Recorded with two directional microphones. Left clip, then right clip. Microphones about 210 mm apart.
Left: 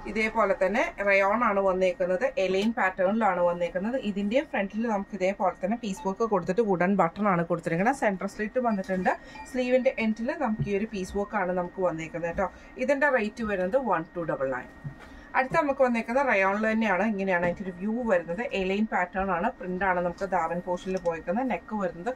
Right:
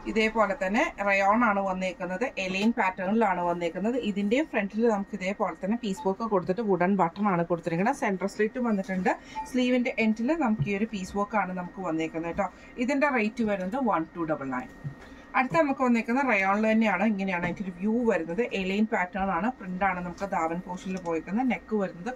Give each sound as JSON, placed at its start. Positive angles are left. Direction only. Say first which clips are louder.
{"t": 0.1, "sound": "speech", "louder": "even", "side_deg": 15}
{"t": 15.3, "sound": "speech", "louder": "even", "side_deg": 15}